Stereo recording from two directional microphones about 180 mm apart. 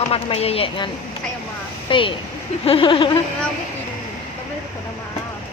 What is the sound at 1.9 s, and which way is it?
Speech, 30° left (ahead or behind).